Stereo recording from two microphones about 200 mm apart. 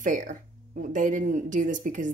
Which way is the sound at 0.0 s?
40° right (ahead or behind).